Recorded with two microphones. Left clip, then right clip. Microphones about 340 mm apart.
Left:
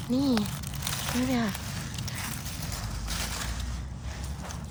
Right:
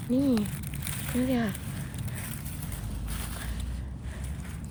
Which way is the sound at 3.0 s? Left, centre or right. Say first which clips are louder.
Left 8 dB; left.